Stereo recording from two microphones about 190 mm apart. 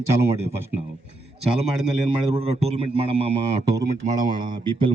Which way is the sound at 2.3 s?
30° right (ahead or behind).